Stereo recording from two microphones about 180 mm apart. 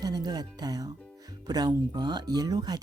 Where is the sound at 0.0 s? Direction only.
20° right (ahead or behind).